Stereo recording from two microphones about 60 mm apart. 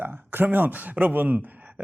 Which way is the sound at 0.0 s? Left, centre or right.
Right.